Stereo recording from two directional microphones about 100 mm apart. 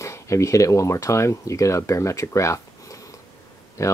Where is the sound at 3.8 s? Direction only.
30° left (ahead or behind).